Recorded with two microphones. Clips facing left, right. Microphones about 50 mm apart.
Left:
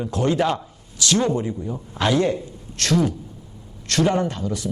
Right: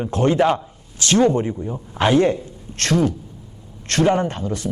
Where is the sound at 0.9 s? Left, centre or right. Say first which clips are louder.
Right 4 dB; right.